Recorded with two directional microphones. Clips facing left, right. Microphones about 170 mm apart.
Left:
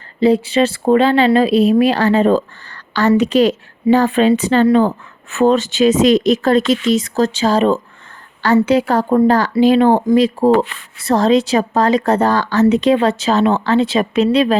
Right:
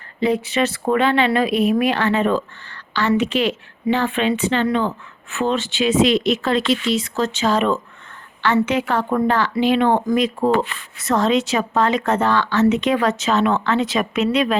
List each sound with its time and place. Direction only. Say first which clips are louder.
0.2 s a woman's voice: left 6 dB; 30° left (ahead or behind)